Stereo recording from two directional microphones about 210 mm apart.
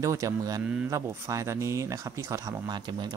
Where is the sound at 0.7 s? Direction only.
5° right (ahead or behind).